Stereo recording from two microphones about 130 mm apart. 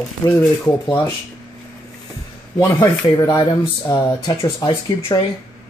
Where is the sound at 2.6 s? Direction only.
20° left (ahead or behind).